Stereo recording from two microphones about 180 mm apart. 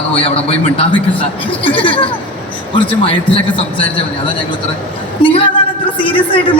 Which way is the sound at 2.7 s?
30° left (ahead or behind).